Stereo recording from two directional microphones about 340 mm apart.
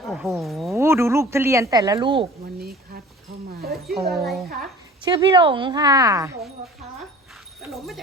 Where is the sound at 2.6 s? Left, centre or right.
Right.